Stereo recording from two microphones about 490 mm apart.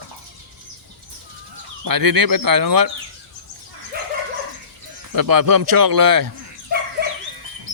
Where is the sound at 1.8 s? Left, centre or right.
Right.